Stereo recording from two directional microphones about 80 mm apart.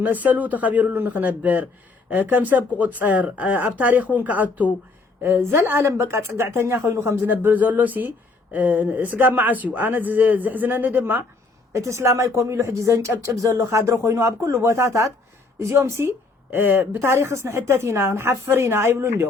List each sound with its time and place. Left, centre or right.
0.0 s a woman's voice: right
5.2 s a woman's voice: right
11.7 s a woman's voice: right